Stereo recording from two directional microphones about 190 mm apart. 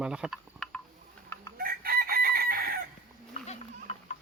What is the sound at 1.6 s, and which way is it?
Chicken, 50° right (ahead or behind).